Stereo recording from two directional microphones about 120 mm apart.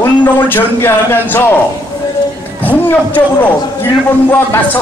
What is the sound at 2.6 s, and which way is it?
Speech, 15° left (ahead or behind).